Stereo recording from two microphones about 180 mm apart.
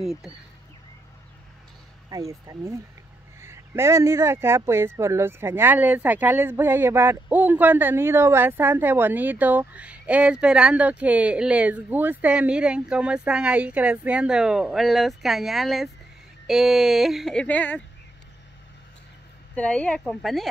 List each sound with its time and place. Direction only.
0.0 s speech: centre (ahead or behind)
2.0 s speech: 20° right (ahead or behind); by 17.8 s 10° left (ahead or behind)
19.5 s speech: 5° left (ahead or behind)